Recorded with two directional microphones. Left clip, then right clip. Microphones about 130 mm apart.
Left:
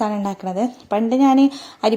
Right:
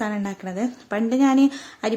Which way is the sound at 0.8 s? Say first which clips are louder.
Left 4 dB; 10° left (ahead or behind).